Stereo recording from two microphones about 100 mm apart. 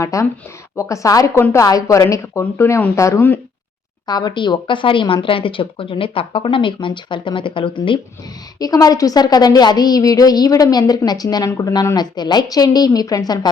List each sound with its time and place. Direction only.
0.0 s a woman's voice: 30° left (ahead or behind)
4.0 s speech: 45° left (ahead or behind)
8.5 s a woman's voice: 40° left (ahead or behind)